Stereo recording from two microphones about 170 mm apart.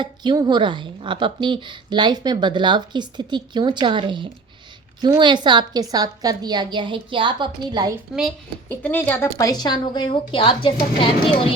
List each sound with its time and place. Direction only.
0.0 s speech: 25° right (ahead or behind)
8.7 s a woman's voice: 10° left (ahead or behind); by 11.4 s 30° left (ahead or behind)